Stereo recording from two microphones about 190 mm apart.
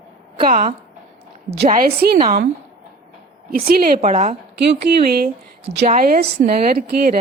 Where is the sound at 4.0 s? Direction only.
40° right (ahead or behind).